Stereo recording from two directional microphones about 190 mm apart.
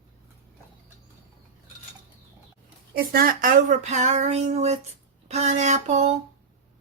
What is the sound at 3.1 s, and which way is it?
Speech, 45° right (ahead or behind).